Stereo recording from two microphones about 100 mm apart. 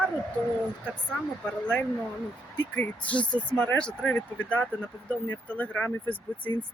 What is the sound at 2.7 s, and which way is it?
Speech, 15° left (ahead or behind).